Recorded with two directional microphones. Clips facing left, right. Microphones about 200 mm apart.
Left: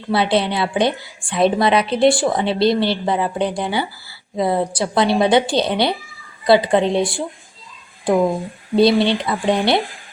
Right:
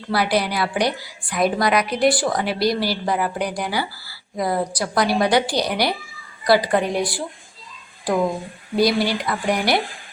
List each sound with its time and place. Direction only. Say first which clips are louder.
0.1 s a woman's voice: left 3 dB; 25° left (ahead or behind)
8.7 s a woman's voice: left 5 dB; 25° left (ahead or behind)